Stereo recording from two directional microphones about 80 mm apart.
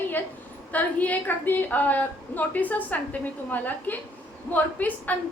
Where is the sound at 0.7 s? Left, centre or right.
Centre.